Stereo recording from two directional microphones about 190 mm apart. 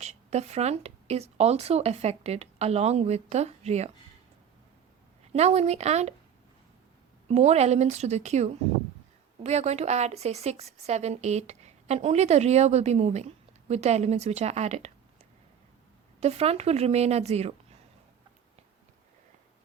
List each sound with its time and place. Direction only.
0.0 s speech: 35° right (ahead or behind)
5.3 s speech: 35° right (ahead or behind)
7.3 s speech: 35° right (ahead or behind)